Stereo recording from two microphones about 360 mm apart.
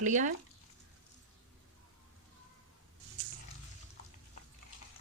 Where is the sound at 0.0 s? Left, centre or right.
Right.